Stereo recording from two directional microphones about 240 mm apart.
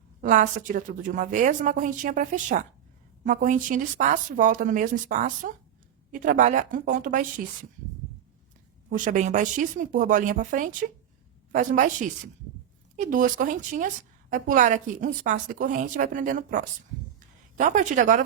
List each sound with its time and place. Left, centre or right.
0.2 s a woman's voice: right
8.9 s a woman's voice: right